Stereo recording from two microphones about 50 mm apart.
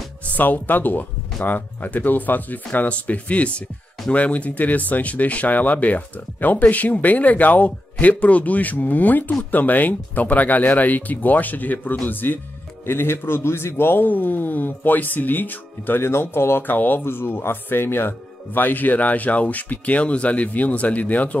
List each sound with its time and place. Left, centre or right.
0.2 s a man's voice: left
16.6 s speech: left